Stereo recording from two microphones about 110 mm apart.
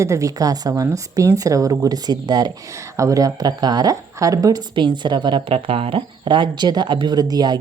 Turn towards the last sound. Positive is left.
turn(degrees=-35)  # may be behind; listen again after turning